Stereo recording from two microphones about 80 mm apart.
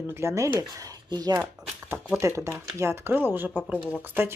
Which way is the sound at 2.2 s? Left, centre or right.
Right.